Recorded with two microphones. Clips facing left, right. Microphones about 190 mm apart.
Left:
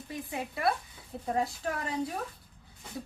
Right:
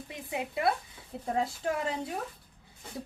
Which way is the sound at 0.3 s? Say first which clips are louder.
Right 2 dB; 20° right (ahead or behind).